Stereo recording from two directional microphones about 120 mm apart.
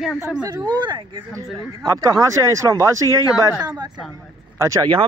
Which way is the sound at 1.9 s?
25° right (ahead or behind).